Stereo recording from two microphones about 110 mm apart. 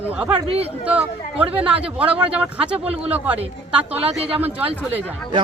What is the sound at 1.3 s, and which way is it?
Speech, 60° right (ahead or behind).